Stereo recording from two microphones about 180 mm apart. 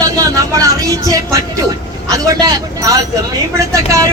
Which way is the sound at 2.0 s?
20° right (ahead or behind).